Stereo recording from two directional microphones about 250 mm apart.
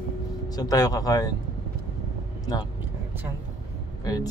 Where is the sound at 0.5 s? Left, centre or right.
Centre.